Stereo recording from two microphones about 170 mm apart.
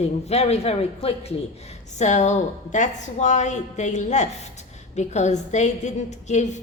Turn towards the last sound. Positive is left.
turn(degrees=45)  # may be behind; listen again after turning